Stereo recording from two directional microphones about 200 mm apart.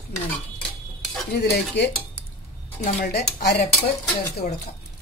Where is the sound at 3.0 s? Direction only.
55° left (ahead or behind).